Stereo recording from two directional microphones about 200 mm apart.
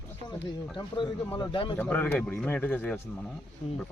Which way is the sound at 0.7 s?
25° left (ahead or behind).